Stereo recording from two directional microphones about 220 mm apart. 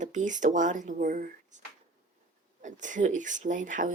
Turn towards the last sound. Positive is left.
turn(degrees=-35)  # may be behind; listen again after turning